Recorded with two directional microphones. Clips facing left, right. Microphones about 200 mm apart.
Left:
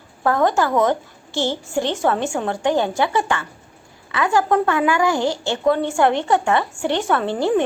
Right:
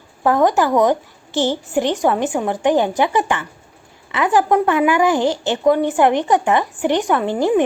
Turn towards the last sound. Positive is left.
turn(degrees=-10)  # may be behind; listen again after turning